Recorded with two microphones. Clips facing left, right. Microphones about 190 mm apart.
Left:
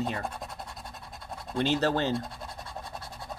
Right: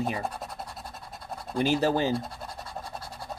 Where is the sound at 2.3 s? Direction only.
30° right (ahead or behind).